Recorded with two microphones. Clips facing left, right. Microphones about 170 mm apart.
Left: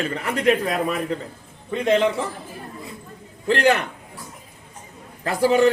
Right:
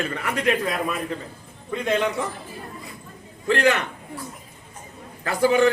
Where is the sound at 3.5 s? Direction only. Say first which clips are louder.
Left 2 dB; 35° left (ahead or behind).